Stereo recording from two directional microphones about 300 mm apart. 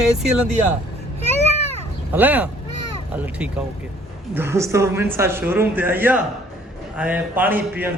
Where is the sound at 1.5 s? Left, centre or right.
Left.